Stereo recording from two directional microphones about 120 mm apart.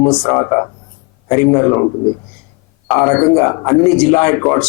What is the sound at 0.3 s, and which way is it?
A man's voice, 15° left (ahead or behind).